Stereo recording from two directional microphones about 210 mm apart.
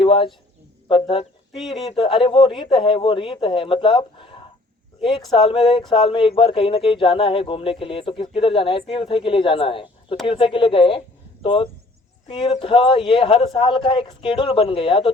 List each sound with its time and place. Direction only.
0.0 s speech: 25° left (ahead or behind)
1.5 s speech: centre (ahead or behind)
1.9 s speech: 25° left (ahead or behind)